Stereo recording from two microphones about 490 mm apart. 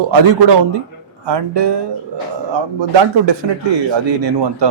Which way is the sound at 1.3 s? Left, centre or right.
Right.